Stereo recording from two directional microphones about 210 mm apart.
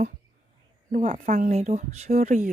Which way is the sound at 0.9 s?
40° right (ahead or behind).